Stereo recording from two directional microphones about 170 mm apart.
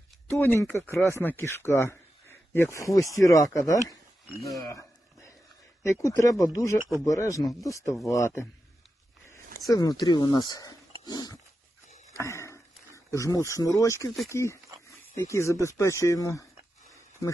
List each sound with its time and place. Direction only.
0.3 s speech: 15° left (ahead or behind)
4.6 s a sound: 15° left (ahead or behind)
5.9 s speech: 15° left (ahead or behind)
12.1 s wild animals: 15° left (ahead or behind)
13.5 s speech: 20° left (ahead or behind)